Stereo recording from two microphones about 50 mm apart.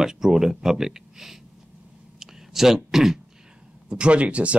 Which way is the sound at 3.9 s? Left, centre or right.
Right.